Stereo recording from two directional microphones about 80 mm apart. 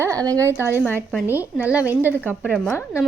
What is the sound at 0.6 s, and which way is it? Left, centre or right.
Speech, right.